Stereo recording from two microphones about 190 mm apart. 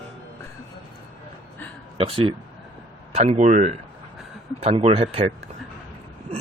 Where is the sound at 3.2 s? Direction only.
40° right (ahead or behind).